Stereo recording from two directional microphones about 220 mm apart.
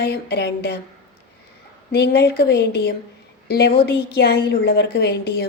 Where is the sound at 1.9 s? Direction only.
45° left (ahead or behind).